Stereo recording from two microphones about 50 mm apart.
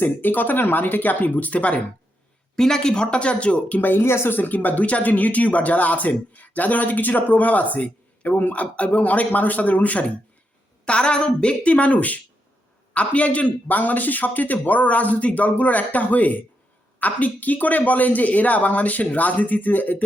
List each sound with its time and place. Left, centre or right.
0.0 s speech: left
2.6 s a woman's voice: centre
3.8 s speech: left
4.0 s speech: left
4.4 s a woman's voice: left